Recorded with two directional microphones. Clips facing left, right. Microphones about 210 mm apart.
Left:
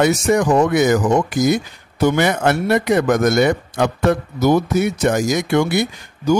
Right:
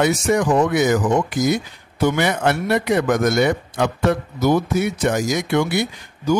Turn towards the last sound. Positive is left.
turn(degrees=45)  # may be behind; listen again after turning